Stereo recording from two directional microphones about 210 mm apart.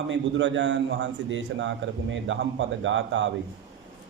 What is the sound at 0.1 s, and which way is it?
A man's voice, 60° right (ahead or behind).